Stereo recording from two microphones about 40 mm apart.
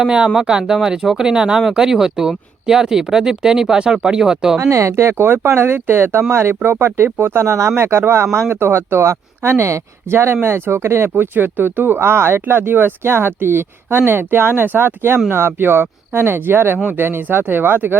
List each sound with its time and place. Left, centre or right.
0.3 s speech: centre
5.1 s speech: right
6.7 s speech: right
11.1 s speech: right
16.7 s speech: right
17.0 s speech: right